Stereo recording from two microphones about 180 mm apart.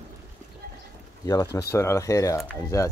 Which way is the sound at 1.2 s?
20° left (ahead or behind).